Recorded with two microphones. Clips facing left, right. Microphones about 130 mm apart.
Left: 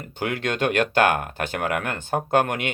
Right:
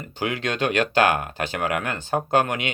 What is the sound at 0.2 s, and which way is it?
Speech, 55° left (ahead or behind).